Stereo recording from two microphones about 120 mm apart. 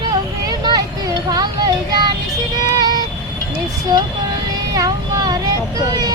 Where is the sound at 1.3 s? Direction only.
35° right (ahead or behind).